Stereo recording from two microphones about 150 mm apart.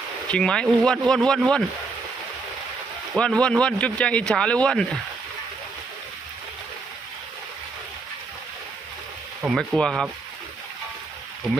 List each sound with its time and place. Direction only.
0.3 s speech: 5° left (ahead or behind)
3.2 s speech: 5° left (ahead or behind)
9.4 s speech: centre (ahead or behind)
11.4 s speech: centre (ahead or behind)